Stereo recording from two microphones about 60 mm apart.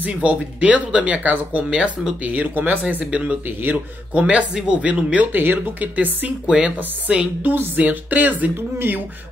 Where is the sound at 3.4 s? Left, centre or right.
Right.